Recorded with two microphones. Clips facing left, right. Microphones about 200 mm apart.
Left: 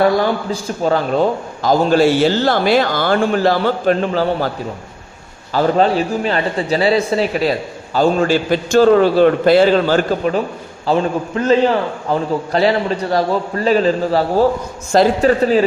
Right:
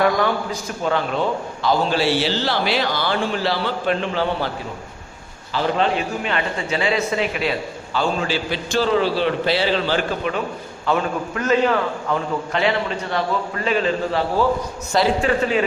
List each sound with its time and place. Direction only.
0.0 s a man's voice: 35° left (ahead or behind)